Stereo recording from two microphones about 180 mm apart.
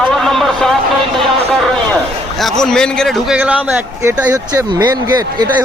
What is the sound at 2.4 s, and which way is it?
A man's voice, 5° left (ahead or behind).